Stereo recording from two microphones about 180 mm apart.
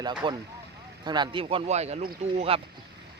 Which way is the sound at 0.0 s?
25° right (ahead or behind).